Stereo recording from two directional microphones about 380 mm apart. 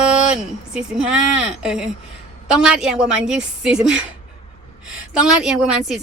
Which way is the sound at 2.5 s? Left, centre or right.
Centre.